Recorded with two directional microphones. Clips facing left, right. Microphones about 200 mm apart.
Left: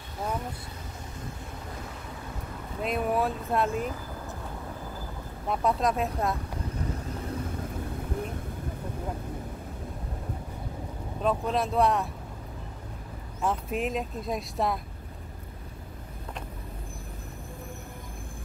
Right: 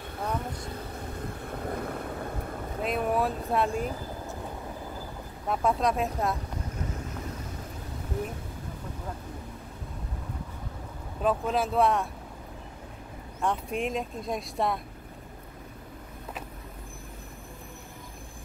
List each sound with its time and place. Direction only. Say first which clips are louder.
1.5 s vehicle: right 7 dB; 55° right (ahead or behind)
2.8 s speech: even; centre (ahead or behind)
5.5 s speech: even; centre (ahead or behind)
11.2 s speech: right 1 dB; centre (ahead or behind)
13.4 s speech: even; centre (ahead or behind)